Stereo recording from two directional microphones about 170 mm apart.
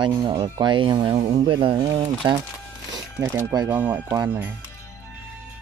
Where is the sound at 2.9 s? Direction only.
20° right (ahead or behind).